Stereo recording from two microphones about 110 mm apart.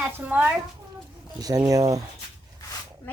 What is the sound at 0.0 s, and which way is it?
Speech, 15° right (ahead or behind).